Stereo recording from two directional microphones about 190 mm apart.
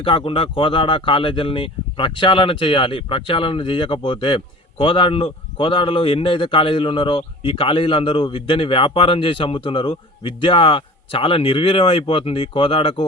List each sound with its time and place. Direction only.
0.0 s speech: 25° left (ahead or behind)